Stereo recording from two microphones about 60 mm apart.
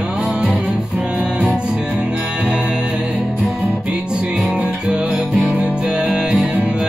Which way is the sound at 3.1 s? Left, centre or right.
Centre.